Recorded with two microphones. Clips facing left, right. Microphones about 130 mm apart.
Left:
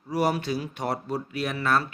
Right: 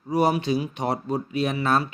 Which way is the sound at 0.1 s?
20° right (ahead or behind).